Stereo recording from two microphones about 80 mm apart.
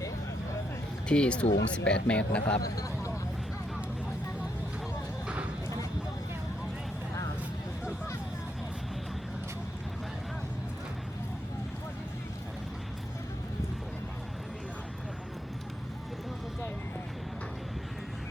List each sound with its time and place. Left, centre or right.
1.0 s speech: centre
2.6 s speech: left